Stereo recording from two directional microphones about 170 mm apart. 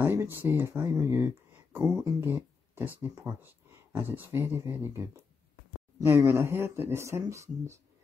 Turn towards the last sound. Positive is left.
turn(degrees=-15)  # may be behind; listen again after turning